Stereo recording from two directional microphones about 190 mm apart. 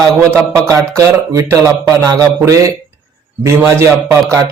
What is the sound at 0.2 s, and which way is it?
Speech, 15° right (ahead or behind).